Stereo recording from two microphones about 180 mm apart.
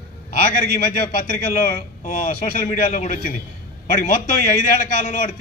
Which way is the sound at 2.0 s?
50° left (ahead or behind).